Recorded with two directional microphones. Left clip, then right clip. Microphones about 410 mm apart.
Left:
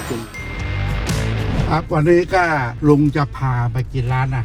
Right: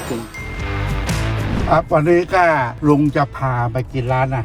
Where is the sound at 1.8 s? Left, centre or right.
Left.